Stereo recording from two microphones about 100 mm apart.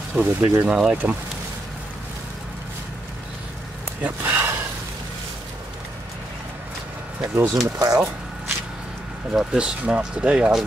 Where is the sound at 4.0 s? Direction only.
20° right (ahead or behind).